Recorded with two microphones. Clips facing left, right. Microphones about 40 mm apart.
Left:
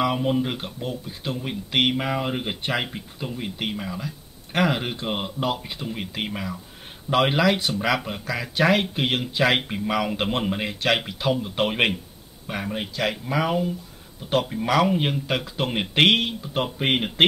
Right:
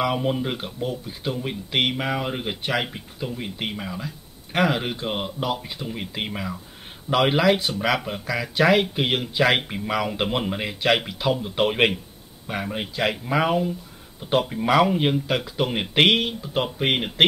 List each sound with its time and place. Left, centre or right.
0.1 s speech: centre
4.5 s speech: centre
7.3 s speech: centre
14.4 s speech: centre